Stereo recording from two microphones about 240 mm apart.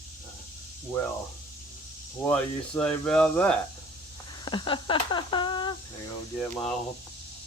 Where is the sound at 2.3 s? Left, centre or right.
Centre.